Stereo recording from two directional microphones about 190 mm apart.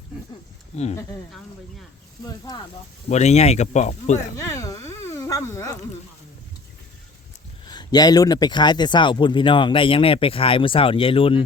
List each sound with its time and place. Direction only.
2.2 s speech: 20° left (ahead or behind)
3.1 s speech: 35° left (ahead or behind)
4.4 s speech: 20° left (ahead or behind)
7.6 s speech: 20° left (ahead or behind)